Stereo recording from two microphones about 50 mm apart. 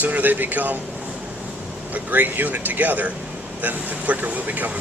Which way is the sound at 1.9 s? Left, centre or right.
Right.